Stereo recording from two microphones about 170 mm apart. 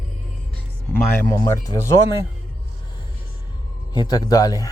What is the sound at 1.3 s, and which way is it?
Speech, 20° left (ahead or behind).